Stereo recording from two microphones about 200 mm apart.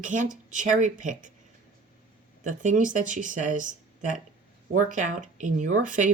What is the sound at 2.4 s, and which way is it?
Speech, 40° right (ahead or behind).